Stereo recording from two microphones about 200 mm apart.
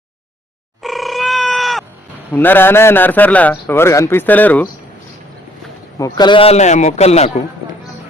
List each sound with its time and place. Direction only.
0.8 s a sound: centre (ahead or behind)
2.3 s a man's voice: 10° left (ahead or behind)
6.0 s a man's voice: 20° left (ahead or behind)